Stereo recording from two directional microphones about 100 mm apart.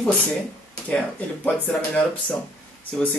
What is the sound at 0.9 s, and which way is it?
Speech, 15° left (ahead or behind).